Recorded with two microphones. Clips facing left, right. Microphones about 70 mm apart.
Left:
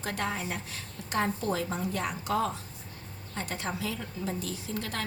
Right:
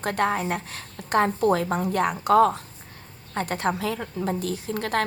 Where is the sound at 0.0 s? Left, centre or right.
Right.